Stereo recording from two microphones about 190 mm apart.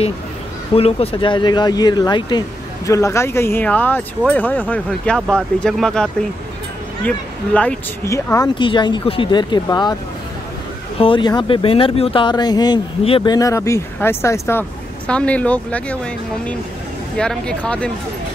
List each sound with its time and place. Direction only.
0.7 s speech: 30° left (ahead or behind)
11.0 s speech: 25° left (ahead or behind); by 16.0 s 5° left (ahead or behind)
17.2 s speech: 5° left (ahead or behind)